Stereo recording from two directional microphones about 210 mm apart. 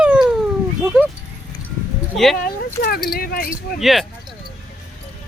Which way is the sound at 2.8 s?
45° left (ahead or behind).